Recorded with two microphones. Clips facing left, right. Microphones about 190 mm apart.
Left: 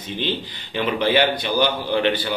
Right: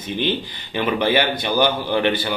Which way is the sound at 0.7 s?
50° right (ahead or behind).